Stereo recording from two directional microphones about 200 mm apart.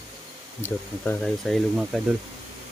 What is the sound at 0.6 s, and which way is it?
Speech, 10° left (ahead or behind).